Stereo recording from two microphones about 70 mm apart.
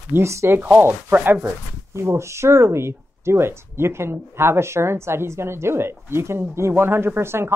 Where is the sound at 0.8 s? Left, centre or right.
Right.